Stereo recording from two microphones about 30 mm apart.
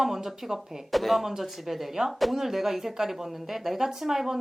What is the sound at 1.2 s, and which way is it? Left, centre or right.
Speech, centre.